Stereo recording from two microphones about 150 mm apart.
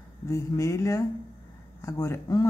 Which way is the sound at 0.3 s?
20° left (ahead or behind).